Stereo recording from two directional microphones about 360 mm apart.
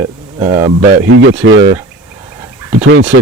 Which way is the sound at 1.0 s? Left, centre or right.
Right.